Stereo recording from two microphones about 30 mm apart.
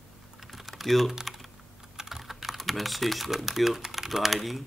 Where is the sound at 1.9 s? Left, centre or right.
Centre.